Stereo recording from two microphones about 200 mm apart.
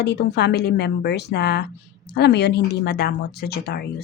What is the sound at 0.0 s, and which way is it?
A woman's voice, 55° left (ahead or behind).